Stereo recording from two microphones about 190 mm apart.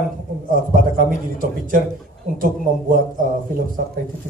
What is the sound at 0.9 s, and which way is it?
A man's voice, 45° right (ahead or behind).